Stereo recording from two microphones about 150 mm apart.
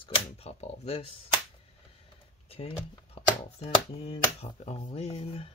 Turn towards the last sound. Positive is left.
turn(degrees=40)  # may be behind; listen again after turning